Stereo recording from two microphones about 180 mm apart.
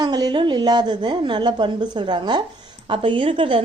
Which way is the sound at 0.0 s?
25° right (ahead or behind).